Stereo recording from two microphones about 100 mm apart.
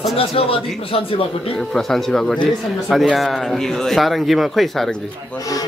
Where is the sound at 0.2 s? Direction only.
70° left (ahead or behind).